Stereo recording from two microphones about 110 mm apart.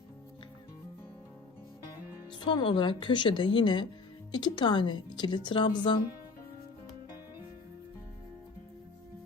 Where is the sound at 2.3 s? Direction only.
45° left (ahead or behind).